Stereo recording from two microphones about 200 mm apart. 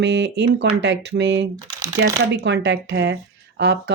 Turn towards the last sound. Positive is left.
turn(degrees=-60)  # may be behind; listen again after turning